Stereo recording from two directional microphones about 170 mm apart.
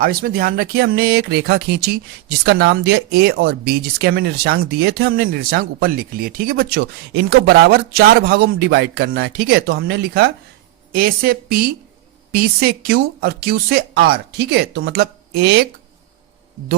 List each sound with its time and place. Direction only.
0.0 s speech: 60° right (ahead or behind); by 10.2 s 80° right
10.9 s speech: 60° right (ahead or behind)